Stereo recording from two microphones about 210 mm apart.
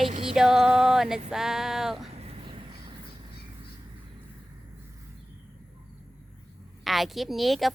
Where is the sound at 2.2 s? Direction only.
30° right (ahead or behind).